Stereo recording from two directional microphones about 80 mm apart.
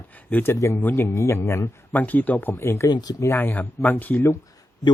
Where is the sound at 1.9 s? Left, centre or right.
Left.